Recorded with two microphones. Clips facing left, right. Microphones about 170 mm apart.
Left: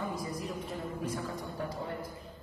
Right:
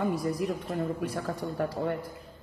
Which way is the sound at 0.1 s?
70° right (ahead or behind).